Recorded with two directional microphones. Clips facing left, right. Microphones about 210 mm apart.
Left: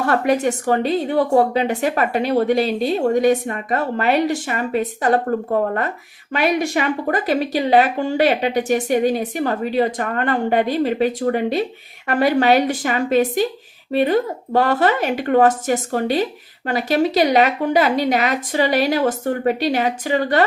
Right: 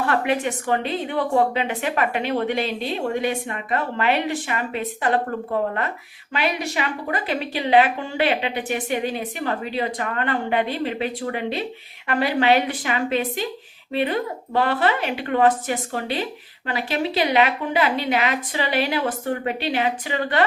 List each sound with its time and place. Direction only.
0.0 s a woman's voice: 40° left (ahead or behind)